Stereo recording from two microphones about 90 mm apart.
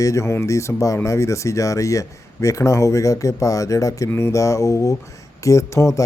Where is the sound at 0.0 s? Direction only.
35° left (ahead or behind).